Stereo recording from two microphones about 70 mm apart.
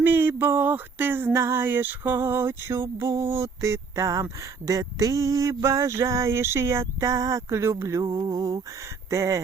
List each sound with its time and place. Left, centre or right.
0.0 s a sound: right
8.0 s mantra: right
9.0 s speech: right